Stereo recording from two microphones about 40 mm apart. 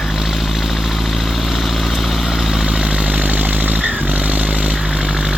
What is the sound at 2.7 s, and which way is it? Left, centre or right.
Vehicle, centre.